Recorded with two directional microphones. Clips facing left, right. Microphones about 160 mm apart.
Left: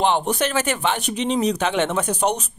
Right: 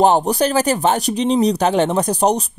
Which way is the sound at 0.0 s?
40° right (ahead or behind).